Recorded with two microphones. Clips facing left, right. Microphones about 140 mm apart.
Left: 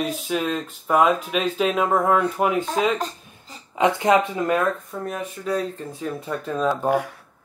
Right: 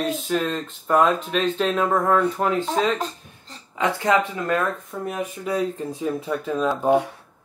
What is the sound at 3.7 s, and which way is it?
Speech, 20° left (ahead or behind).